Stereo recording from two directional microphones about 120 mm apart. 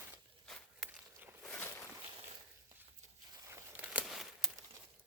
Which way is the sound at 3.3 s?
25° right (ahead or behind).